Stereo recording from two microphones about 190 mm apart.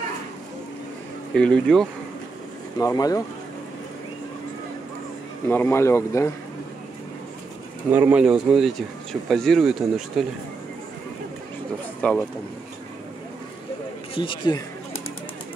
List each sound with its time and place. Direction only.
1.3 s speech: 5° left (ahead or behind)
2.8 s speech: 20° left (ahead or behind)
5.5 s speech: 10° left (ahead or behind)
7.9 s speech: 10° right (ahead or behind)
12.0 s speech: 5° left (ahead or behind)
14.1 s speech: 25° left (ahead or behind)